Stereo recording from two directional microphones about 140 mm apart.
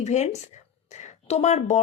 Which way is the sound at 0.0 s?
55° left (ahead or behind).